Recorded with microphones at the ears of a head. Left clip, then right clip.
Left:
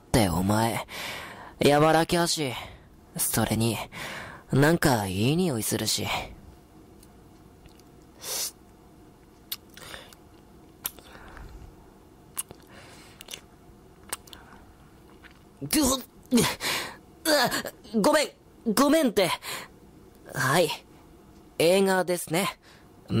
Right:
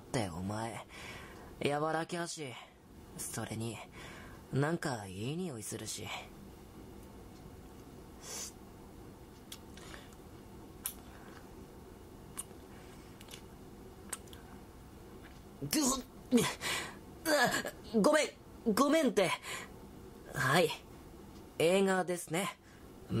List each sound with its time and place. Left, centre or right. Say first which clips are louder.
0.1 s speech: left 14 dB; left
8.2 s sneeze: left 12 dB; left
9.5 s biting: left 11 dB; left
15.6 s a sound: left 8 dB; left
18.8 s speech: left 7 dB; left